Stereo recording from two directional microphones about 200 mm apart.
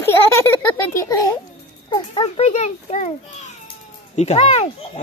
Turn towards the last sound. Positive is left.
turn(degrees=30)  # may be behind; listen again after turning